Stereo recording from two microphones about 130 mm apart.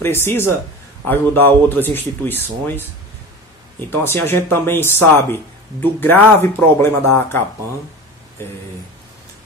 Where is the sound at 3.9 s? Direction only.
15° left (ahead or behind).